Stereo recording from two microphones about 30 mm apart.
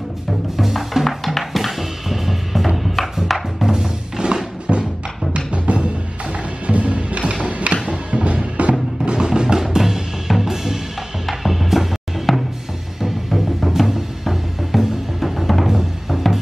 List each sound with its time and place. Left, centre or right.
0.6 s music: centre
1.0 s music: centre
1.4 s music: centre
3.6 s music: right
4.7 s music: right
5.3 s music: right
9.0 s music: right; by 16.3 s centre